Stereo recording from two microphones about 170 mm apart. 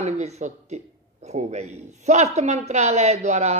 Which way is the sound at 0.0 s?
40° right (ahead or behind).